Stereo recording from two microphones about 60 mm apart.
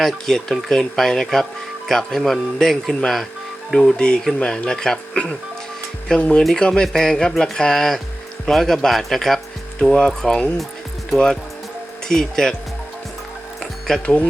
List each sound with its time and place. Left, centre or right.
0.0 s speech: centre
12.0 s speech: centre
13.6 s music: centre
14.0 s speech: left